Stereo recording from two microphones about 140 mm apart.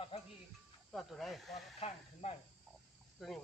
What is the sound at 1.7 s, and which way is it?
Speech, 45° left (ahead or behind).